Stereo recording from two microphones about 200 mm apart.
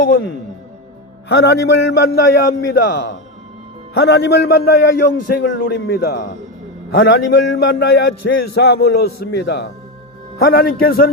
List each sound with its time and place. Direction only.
1.3 s a man's voice: 55° left (ahead or behind)
6.9 s a man's voice: 65° left (ahead or behind); by 11.1 s 50° left (ahead or behind)